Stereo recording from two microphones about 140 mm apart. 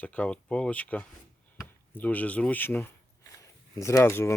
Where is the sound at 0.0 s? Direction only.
10° left (ahead or behind).